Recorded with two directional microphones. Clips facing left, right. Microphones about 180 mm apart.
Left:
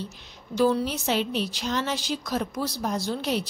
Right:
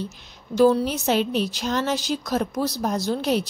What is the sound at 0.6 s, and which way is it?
A woman's voice, 45° right (ahead or behind).